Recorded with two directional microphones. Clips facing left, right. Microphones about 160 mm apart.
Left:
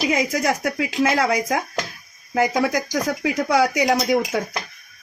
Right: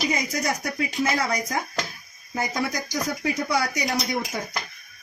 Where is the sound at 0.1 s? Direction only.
90° left.